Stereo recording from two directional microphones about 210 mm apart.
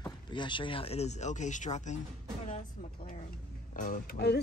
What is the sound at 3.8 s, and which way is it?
Speech, 40° left (ahead or behind).